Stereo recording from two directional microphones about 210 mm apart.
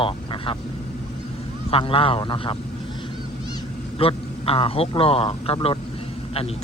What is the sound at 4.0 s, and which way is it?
A man's voice, 25° left (ahead or behind).